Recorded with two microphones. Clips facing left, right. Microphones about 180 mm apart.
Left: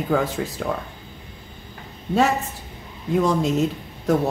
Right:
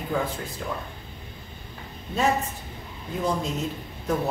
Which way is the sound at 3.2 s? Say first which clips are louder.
Left 5 dB; 90° left.